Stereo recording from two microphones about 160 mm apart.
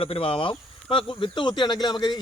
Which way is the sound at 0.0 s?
35° left (ahead or behind).